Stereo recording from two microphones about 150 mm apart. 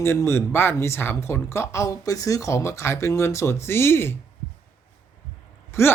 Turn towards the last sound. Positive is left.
turn(degrees=20)  # may be behind; listen again after turning